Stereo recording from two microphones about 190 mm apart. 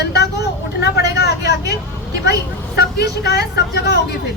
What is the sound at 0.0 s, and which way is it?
Vehicle, 60° left (ahead or behind).